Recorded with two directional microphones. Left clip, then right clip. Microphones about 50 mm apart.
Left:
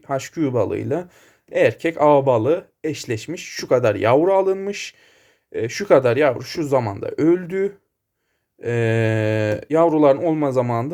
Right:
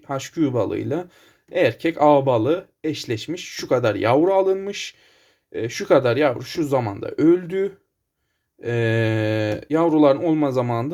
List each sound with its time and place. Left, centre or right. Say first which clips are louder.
0.1 s speech: left 1 dB; left
8.6 s speech: left 1 dB; left